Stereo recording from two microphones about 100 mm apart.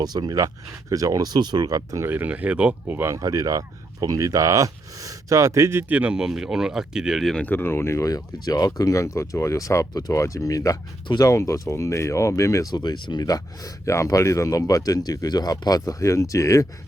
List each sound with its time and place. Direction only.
0.0 s speech: 40° right (ahead or behind)
2.0 s speech: 15° right (ahead or behind)
3.2 s speech: 35° right (ahead or behind)
5.9 s speech: 10° right (ahead or behind)
7.4 s speech: 20° left (ahead or behind)
12.7 s speech: 45° left (ahead or behind)